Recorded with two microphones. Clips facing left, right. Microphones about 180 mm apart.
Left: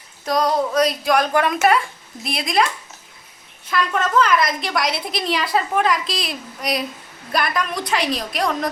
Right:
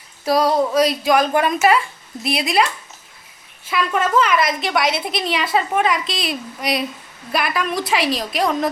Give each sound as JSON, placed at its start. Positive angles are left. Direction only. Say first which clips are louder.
{"t": 0.3, "sound": "a woman's voice", "louder": "right 3 dB", "side_deg": -5}
{"t": 3.7, "sound": "a woman's voice", "louder": "right 2 dB", "side_deg": -5}